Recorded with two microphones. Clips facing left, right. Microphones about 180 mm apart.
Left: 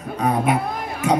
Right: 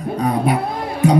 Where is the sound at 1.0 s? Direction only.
35° right (ahead or behind).